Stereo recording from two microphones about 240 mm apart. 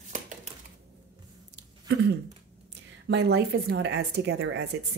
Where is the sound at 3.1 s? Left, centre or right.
Right.